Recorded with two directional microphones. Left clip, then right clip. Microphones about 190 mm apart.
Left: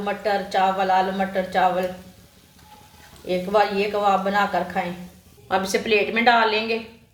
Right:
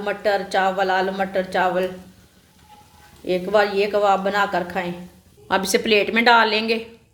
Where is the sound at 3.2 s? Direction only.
55° right (ahead or behind).